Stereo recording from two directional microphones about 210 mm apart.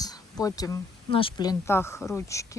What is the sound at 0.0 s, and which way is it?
Speech, 20° left (ahead or behind).